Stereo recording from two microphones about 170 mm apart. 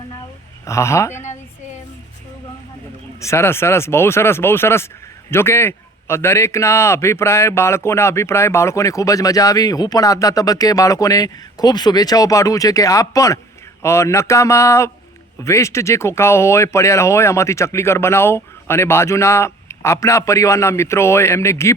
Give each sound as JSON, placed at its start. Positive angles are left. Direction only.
{"t": 0.6, "sound": "speech", "side_deg": 15}
{"t": 3.2, "sound": "a man's voice", "side_deg": 15}